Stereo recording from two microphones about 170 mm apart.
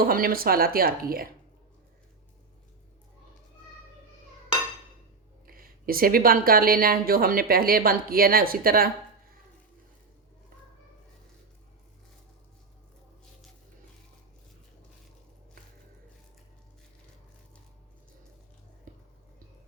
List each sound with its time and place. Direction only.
0.0 s a woman's voice: 60° right (ahead or behind)
5.5 s a woman's voice: 60° right (ahead or behind)
18.9 s a sound: 50° right (ahead or behind)